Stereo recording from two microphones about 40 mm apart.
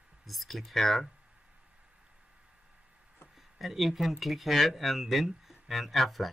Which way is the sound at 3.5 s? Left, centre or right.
Centre.